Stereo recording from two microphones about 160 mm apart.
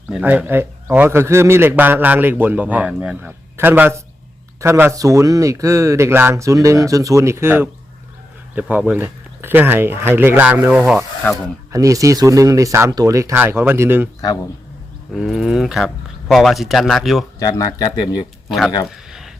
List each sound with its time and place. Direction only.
0.1 s a man's voice: 10° right (ahead or behind)
11.2 s speech: 5° left (ahead or behind)
11.7 s speech: 20° right (ahead or behind)
15.1 s speech: centre (ahead or behind)
17.4 s speech: 20° left (ahead or behind)